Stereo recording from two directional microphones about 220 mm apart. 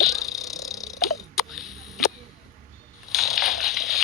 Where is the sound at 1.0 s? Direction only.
Centre (ahead or behind).